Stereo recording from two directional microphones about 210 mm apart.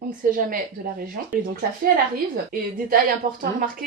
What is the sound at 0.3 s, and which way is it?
Speech, 40° right (ahead or behind).